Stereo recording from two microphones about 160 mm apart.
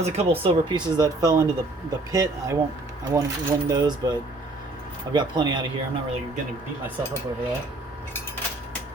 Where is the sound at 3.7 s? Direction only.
20° right (ahead or behind).